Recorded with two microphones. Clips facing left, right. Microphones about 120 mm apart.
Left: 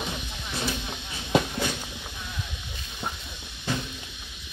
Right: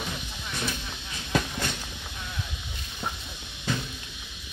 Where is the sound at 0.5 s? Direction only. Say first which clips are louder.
Left 2 dB; 30° left (ahead or behind).